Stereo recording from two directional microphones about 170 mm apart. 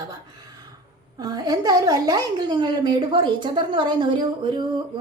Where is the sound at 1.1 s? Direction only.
20° right (ahead or behind).